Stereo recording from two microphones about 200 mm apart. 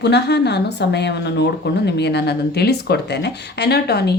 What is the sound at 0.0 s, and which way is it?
A woman's voice, 55° left (ahead or behind).